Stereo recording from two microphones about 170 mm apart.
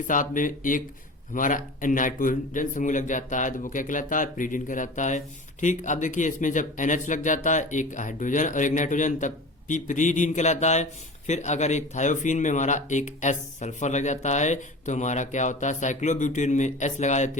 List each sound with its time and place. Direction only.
0.1 s a man's voice: 50° left (ahead or behind)